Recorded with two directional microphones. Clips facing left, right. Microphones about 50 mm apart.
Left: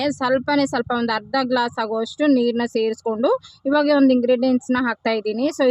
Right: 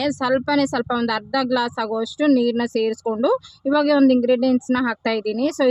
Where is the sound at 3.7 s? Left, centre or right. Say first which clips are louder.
Even; left.